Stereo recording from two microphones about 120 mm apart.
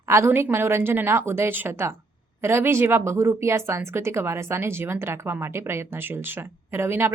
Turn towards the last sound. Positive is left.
turn(degrees=-20)  # may be behind; listen again after turning